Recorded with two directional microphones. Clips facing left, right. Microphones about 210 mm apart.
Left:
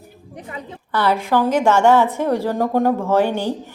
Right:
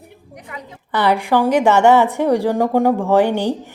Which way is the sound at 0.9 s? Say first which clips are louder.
Right 2 dB; 15° right (ahead or behind).